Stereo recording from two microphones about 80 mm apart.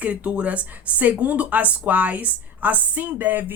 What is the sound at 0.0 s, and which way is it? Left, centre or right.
Speech, centre.